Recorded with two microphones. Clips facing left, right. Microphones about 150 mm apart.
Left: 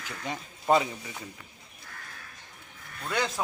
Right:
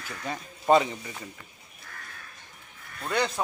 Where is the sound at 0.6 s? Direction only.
Centre (ahead or behind).